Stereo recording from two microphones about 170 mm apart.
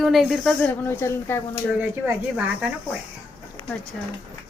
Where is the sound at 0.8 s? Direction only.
15° left (ahead or behind).